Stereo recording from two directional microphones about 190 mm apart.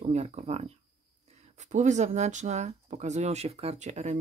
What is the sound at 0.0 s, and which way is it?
Speech, 35° right (ahead or behind).